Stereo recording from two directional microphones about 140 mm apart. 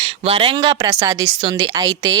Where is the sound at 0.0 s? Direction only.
40° right (ahead or behind).